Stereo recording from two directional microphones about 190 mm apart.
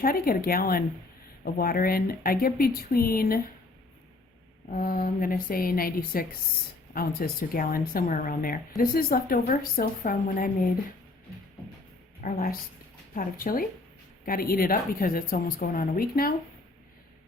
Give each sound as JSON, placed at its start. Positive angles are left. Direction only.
{"t": 0.0, "sound": "a woman's voice", "side_deg": 50}
{"t": 4.7, "sound": "a woman's voice", "side_deg": 50}
{"t": 12.2, "sound": "a woman's voice", "side_deg": 50}